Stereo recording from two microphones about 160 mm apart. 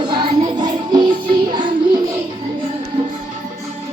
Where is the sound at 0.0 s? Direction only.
30° right (ahead or behind).